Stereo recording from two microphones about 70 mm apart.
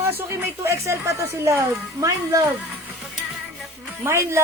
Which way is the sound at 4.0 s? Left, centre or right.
Right.